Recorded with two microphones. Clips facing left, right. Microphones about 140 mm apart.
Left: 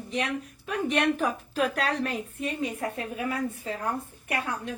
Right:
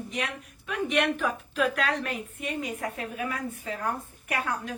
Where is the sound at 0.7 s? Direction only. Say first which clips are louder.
Left 1 dB; 35° left (ahead or behind).